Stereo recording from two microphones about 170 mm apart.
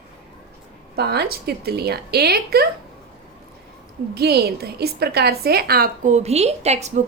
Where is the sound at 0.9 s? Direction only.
70° right (ahead or behind).